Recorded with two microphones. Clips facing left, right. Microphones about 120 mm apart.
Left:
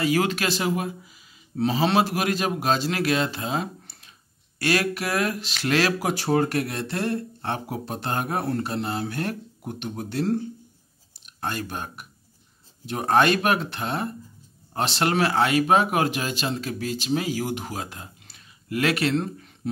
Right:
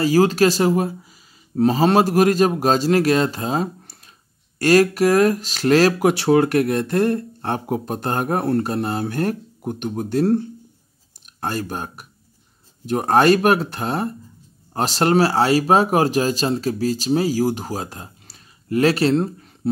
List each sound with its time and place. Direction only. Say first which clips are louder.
0.0 s speech: right 8 dB; 35° right (ahead or behind)
6.0 s speech: right 7 dB; 85° right; by 10.4 s 45° right (ahead or behind)
11.4 s speech: right 5 dB; 40° right (ahead or behind)